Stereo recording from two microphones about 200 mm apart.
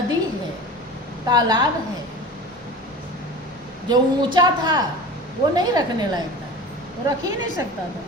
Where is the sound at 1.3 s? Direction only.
20° right (ahead or behind).